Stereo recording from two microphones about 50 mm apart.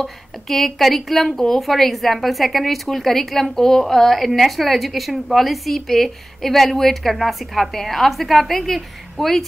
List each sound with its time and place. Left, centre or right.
0.0 s a woman's voice: centre